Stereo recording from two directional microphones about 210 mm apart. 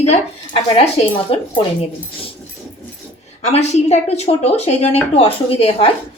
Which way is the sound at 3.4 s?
30° left (ahead or behind).